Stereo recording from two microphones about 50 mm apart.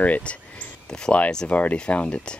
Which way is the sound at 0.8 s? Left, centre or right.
Centre.